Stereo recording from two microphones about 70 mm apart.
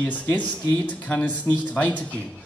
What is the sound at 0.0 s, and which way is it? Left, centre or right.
A man's voice, left.